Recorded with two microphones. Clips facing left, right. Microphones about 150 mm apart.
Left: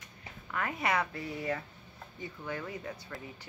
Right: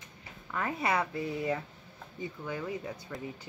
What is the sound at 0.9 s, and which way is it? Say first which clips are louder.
Speech: right 3 dB; 10° right (ahead or behind).